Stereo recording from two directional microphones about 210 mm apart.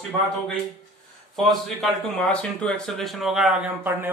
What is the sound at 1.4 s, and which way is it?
Speech, centre (ahead or behind).